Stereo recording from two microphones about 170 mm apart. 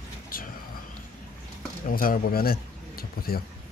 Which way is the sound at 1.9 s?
55° left (ahead or behind).